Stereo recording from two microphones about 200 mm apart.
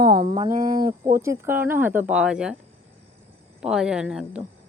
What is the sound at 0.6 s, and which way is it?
Speech, 20° right (ahead or behind).